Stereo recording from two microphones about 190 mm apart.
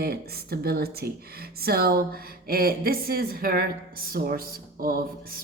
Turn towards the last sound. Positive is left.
turn(degrees=-50)  # may be behind; listen again after turning